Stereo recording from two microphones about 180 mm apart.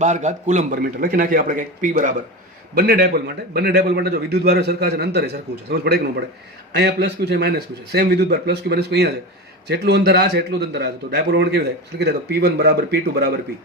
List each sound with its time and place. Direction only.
0.0 s a man's voice: 40° right (ahead or behind)
0.8 s a man's voice: 55° right (ahead or behind)
2.7 s a man's voice: 60° right (ahead or behind)